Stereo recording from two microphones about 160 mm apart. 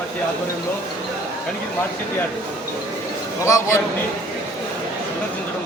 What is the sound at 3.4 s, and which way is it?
Speech, 20° left (ahead or behind).